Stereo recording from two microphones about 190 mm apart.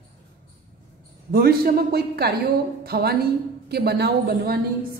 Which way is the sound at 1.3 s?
55° right (ahead or behind).